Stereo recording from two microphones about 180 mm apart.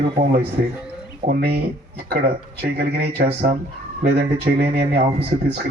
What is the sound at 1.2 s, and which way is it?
Speech, 60° right (ahead or behind).